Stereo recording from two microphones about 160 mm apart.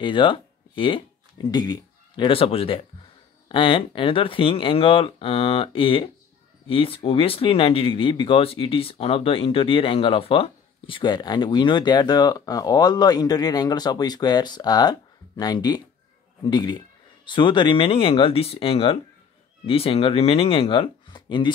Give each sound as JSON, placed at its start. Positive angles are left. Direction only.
{"t": 0.0, "sound": "speech", "side_deg": 30}